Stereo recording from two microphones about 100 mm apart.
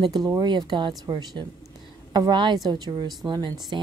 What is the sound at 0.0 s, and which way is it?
A woman's voice, 40° right (ahead or behind).